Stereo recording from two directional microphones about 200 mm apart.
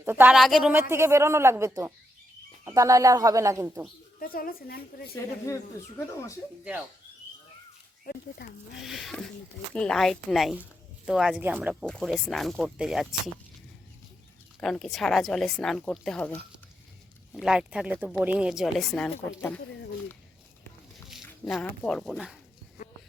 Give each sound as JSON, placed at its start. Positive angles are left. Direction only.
{"t": 0.0, "sound": "speech", "side_deg": -10}
{"t": 0.7, "sound": "speech", "side_deg": -10}
{"t": 4.2, "sound": "a woman's voice", "side_deg": 45}
{"t": 8.8, "sound": "speech", "side_deg": 0}
{"t": 14.6, "sound": "speech", "side_deg": 0}
{"t": 17.3, "sound": "speech", "side_deg": -5}
{"t": 21.1, "sound": "speech", "side_deg": 0}